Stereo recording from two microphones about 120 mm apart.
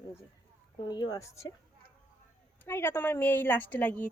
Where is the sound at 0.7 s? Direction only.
40° left (ahead or behind).